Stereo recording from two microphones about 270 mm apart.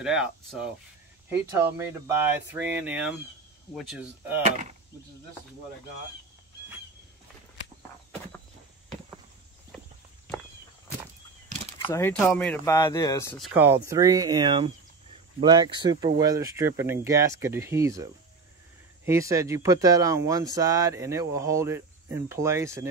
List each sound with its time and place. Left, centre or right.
0.0 s speech: centre
11.8 s speech: centre
13.5 s speech: centre
19.0 s speech: centre